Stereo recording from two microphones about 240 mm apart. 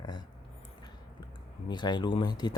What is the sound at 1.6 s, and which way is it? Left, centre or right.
Speech, centre.